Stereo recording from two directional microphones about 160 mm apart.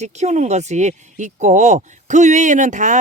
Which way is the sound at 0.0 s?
45° right (ahead or behind).